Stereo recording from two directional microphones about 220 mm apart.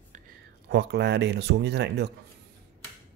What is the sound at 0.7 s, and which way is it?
Speech, 50° right (ahead or behind).